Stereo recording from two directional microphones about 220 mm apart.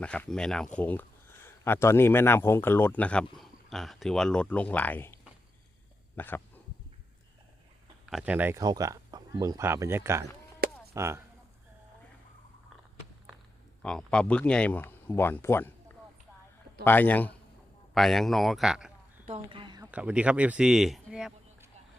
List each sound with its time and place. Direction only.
0.0 s speech: 5° left (ahead or behind)
8.0 s speech: 5° right (ahead or behind)
13.8 s speech: 5° left (ahead or behind)
16.8 s speech: 10° left (ahead or behind)
19.2 s a sound: 25° right (ahead or behind)
19.9 s speech: 5° right (ahead or behind)